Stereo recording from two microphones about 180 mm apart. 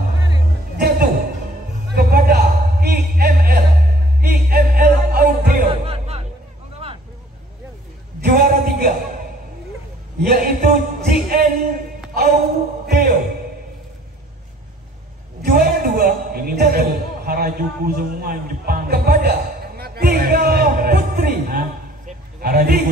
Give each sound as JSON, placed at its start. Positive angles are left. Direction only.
{"t": 0.7, "sound": "music", "side_deg": -60}
{"t": 1.9, "sound": "a sound", "side_deg": -60}
{"t": 5.7, "sound": "music", "side_deg": -35}
{"t": 8.2, "sound": "music", "side_deg": -60}
{"t": 10.3, "sound": "music", "side_deg": -55}
{"t": 12.8, "sound": "music", "side_deg": -60}
{"t": 15.4, "sound": "a sound", "side_deg": -60}